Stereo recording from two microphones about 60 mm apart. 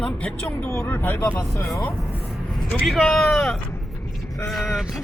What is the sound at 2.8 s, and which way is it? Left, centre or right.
Speech, centre.